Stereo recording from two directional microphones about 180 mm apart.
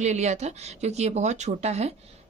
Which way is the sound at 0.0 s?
40° right (ahead or behind).